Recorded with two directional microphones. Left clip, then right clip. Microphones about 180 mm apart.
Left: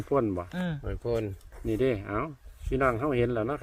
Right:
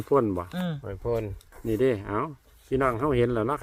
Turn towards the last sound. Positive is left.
turn(degrees=-15)  # may be behind; listen again after turning